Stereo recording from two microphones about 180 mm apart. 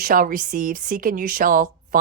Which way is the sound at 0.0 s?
50° right (ahead or behind).